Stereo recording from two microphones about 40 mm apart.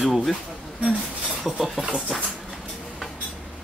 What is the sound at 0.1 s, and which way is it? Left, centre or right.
Speech, centre.